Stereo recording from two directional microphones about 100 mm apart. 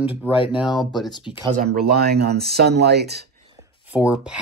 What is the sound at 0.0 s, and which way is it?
Speech, 15° right (ahead or behind).